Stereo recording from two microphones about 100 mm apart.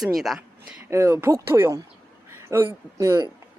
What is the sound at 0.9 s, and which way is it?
Speech, 30° right (ahead or behind).